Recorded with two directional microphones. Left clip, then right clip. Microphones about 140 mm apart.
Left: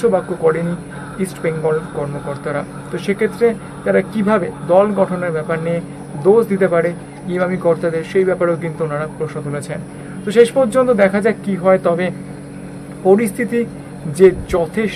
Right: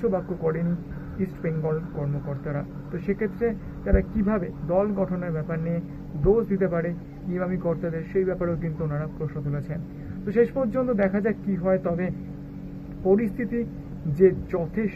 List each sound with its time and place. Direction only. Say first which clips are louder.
0.1 s speech: left 11 dB; 35° left (ahead or behind)
13.1 s speech: left 9 dB; 35° left (ahead or behind)